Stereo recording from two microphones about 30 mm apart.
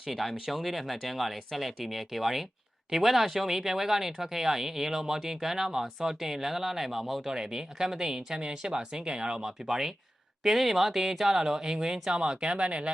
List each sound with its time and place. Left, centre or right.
0.1 s speech: centre
7.3 s speech: centre
8.4 s speech: right
9.6 s speech: centre
11.3 s speech: centre
12.5 s speech: right